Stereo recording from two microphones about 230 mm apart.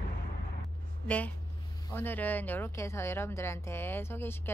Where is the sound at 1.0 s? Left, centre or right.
Centre.